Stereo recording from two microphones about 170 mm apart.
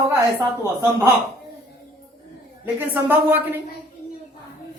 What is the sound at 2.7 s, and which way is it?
Speech, 10° right (ahead or behind).